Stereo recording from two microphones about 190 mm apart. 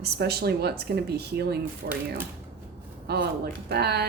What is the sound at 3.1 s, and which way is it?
Speech, 60° right (ahead or behind).